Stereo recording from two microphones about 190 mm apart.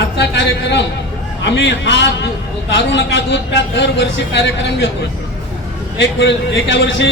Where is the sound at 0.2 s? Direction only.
65° left (ahead or behind).